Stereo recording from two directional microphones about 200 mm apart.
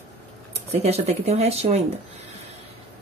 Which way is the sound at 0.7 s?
30° right (ahead or behind).